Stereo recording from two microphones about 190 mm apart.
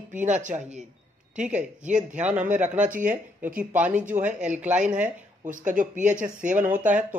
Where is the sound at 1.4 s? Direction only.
5° right (ahead or behind).